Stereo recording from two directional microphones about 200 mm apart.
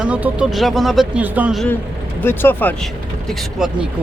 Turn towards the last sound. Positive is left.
turn(degrees=-5)  # may be behind; listen again after turning